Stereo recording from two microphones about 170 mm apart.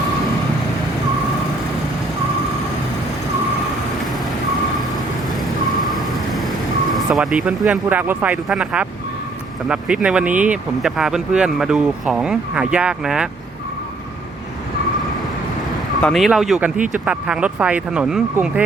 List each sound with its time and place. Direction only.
5.8 s vehicle: centre (ahead or behind)
7.3 s speech: 5° right (ahead or behind)
16.0 s speech: 5° left (ahead or behind)